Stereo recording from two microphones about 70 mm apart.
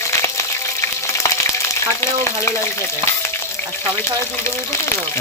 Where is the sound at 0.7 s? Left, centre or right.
Left.